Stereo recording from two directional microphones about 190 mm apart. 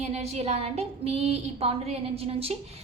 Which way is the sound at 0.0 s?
35° right (ahead or behind).